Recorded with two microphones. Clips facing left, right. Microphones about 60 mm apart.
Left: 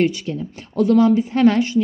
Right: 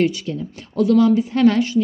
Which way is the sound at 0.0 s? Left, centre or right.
Left.